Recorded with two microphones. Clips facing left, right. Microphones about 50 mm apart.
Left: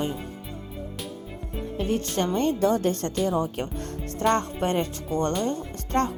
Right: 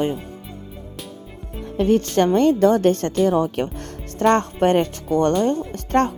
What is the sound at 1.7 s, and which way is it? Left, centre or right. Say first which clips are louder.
Speech: right 9 dB; right.